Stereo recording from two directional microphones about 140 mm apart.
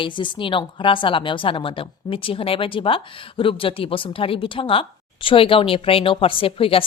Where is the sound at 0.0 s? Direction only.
35° left (ahead or behind).